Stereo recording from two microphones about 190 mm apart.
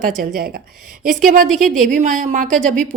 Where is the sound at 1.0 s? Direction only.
45° right (ahead or behind).